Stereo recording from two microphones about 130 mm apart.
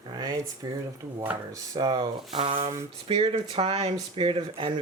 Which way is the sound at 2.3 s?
45° right (ahead or behind).